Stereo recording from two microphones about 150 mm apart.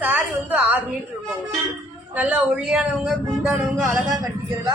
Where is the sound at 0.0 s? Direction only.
10° right (ahead or behind).